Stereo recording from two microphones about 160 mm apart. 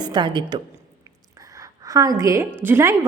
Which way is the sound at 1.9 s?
20° right (ahead or behind).